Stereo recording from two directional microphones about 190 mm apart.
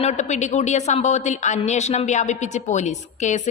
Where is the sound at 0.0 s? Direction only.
35° left (ahead or behind).